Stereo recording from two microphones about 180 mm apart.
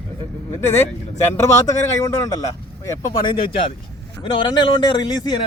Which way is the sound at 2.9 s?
25° left (ahead or behind).